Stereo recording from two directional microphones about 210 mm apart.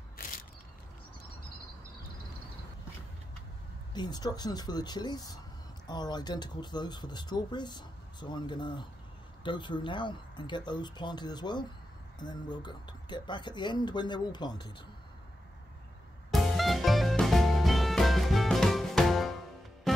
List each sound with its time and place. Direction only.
0.2 s a sound: 40° left (ahead or behind)
3.9 s speech: 20° left (ahead or behind)
16.3 s music: centre (ahead or behind)